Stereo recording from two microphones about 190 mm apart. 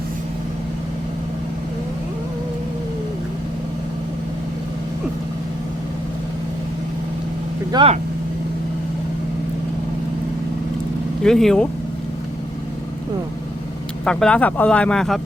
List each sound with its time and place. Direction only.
7.7 s speech: 25° right (ahead or behind)
11.2 s speech: centre (ahead or behind)
14.0 s speech: 5° left (ahead or behind)